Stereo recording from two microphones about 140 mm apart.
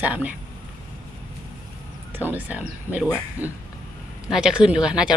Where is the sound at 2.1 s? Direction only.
15° right (ahead or behind).